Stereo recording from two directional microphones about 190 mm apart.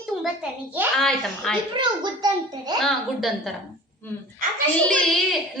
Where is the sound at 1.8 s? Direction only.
20° right (ahead or behind).